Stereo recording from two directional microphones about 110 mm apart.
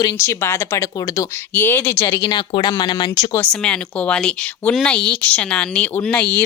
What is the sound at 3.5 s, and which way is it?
Speech, 10° left (ahead or behind).